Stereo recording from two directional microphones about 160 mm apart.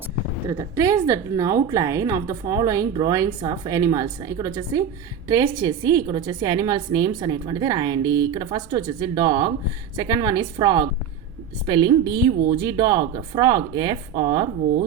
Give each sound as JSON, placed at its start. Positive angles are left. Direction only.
{"t": 0.5, "sound": "a woman's voice", "side_deg": -20}